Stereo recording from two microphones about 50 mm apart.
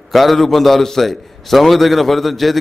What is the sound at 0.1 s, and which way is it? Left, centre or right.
A man's voice, centre.